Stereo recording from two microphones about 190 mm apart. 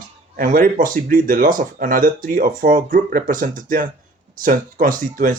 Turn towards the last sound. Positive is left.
turn(degrees=-45)  # may be behind; listen again after turning